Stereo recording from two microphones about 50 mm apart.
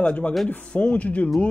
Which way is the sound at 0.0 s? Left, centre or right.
Left.